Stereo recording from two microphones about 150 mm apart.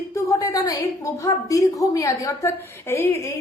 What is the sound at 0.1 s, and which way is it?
A woman's voice, 20° left (ahead or behind).